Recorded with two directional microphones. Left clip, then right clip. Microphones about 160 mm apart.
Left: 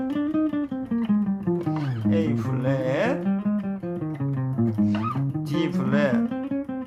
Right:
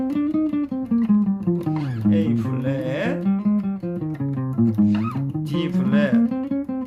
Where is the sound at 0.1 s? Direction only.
20° right (ahead or behind).